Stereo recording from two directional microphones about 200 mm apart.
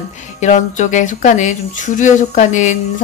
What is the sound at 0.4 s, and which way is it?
Speech, 35° left (ahead or behind).